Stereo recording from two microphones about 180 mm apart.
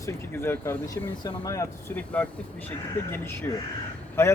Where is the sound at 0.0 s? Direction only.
15° left (ahead or behind).